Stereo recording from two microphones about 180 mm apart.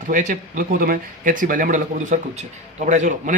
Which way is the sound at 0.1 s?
45° right (ahead or behind).